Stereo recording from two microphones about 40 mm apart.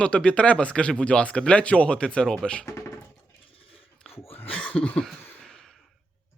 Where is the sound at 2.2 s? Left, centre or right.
Centre.